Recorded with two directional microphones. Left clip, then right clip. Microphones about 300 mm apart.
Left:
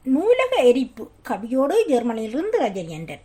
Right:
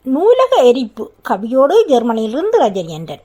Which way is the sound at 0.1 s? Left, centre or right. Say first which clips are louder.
Right 8 dB; right.